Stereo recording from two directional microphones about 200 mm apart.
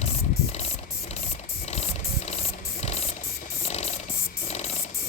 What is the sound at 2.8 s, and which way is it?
Music, 30° left (ahead or behind).